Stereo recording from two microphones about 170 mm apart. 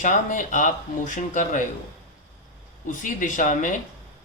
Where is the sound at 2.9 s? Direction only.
50° left (ahead or behind).